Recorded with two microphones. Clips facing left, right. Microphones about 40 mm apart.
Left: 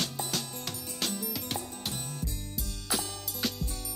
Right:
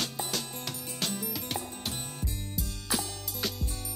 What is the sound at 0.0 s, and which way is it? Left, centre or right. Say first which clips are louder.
Music: even; centre.